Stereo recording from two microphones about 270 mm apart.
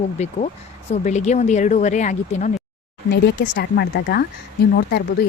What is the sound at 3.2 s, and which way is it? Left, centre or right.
Speech, left.